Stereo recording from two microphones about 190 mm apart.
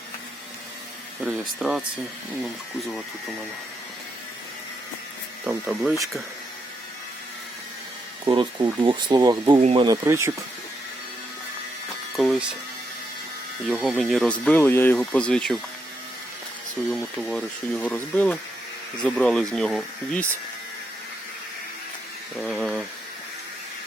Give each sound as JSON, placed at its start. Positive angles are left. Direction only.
{"t": 1.3, "sound": "speech", "side_deg": 0}
{"t": 5.5, "sound": "speech", "side_deg": -10}
{"t": 8.2, "sound": "speech", "side_deg": -25}
{"t": 9.6, "sound": "speech", "side_deg": -35}
{"t": 9.8, "sound": "speech", "side_deg": -15}
{"t": 12.1, "sound": "music", "side_deg": 0}
{"t": 13.7, "sound": "speech", "side_deg": 0}
{"t": 16.9, "sound": "speech", "side_deg": 0}
{"t": 22.4, "sound": "a sound", "side_deg": 5}